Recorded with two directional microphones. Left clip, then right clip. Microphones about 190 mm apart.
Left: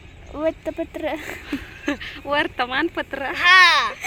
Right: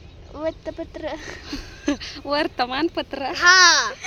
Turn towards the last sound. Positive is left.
turn(degrees=-35)  # may be behind; listen again after turning